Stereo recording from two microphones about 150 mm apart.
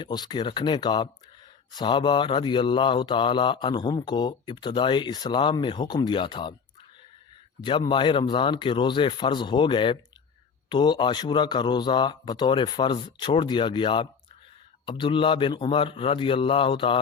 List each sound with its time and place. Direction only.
0.0 s mantra: 30° left (ahead or behind)
7.6 s mantra: 30° left (ahead or behind)